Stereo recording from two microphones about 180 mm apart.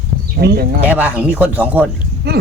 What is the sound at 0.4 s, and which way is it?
Speech, 65° right (ahead or behind).